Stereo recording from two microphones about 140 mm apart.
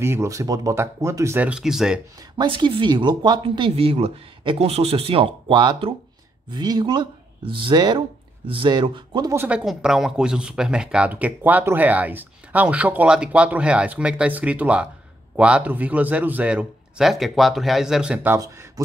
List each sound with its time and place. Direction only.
0.0 s speech: 20° right (ahead or behind)
1.5 s speech: 5° right (ahead or behind)
2.3 s speech: 35° right (ahead or behind)
9.3 s speech: 10° right (ahead or behind)